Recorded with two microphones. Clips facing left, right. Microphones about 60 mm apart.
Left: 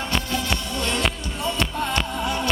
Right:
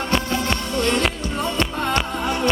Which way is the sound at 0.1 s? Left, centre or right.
Right.